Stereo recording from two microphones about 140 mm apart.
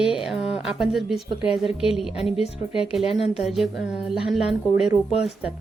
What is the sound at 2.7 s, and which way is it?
Speech, 40° left (ahead or behind).